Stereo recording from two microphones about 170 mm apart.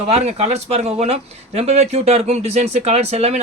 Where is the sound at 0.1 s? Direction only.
40° right (ahead or behind).